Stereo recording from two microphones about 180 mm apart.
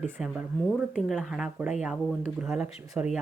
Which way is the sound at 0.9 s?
Centre (ahead or behind).